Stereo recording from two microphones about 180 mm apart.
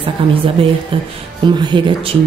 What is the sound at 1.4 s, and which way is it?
Speech, 25° right (ahead or behind).